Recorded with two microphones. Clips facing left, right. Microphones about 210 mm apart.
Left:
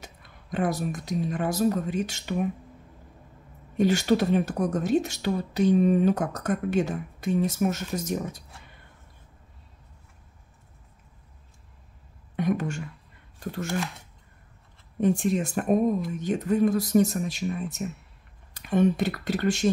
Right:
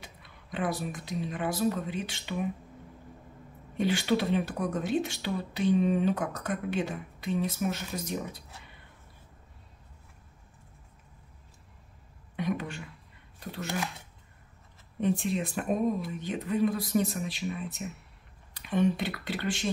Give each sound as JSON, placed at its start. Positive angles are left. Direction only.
{"t": 0.0, "sound": "speech", "side_deg": 45}
{"t": 3.7, "sound": "speech", "side_deg": 45}
{"t": 12.4, "sound": "speech", "side_deg": 45}
{"t": 15.0, "sound": "speech", "side_deg": 45}